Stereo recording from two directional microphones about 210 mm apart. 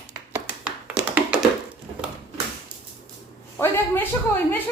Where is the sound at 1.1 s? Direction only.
5° right (ahead or behind).